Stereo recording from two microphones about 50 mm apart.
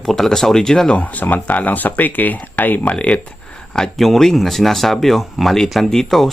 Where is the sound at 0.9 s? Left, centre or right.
Left.